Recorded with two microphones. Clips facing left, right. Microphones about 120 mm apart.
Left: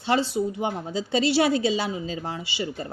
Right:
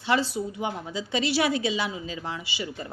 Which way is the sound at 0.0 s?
30° left (ahead or behind).